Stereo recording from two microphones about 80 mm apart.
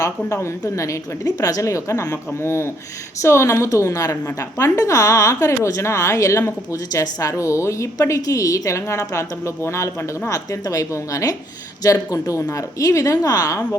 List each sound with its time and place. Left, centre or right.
0.3 s a woman's voice: left